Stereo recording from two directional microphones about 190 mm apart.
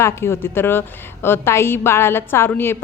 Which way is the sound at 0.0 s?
15° left (ahead or behind).